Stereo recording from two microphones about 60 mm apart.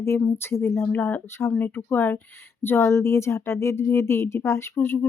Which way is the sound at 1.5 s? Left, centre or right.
Left.